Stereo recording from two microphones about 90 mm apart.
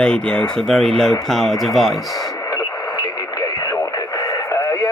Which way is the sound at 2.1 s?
40° left (ahead or behind).